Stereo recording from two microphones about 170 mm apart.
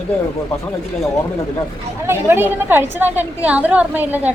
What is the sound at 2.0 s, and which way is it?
A woman's voice, 15° right (ahead or behind).